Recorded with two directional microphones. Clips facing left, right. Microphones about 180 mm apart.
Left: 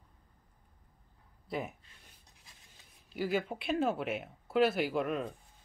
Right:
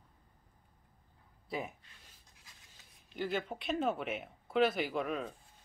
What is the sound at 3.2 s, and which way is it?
Speech, 5° left (ahead or behind).